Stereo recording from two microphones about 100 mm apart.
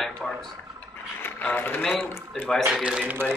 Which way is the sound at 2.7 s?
5° right (ahead or behind).